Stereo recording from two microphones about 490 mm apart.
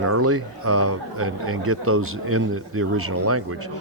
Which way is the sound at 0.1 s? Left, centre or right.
Right.